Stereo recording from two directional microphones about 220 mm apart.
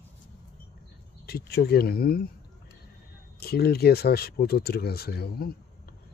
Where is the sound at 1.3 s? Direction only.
45° left (ahead or behind).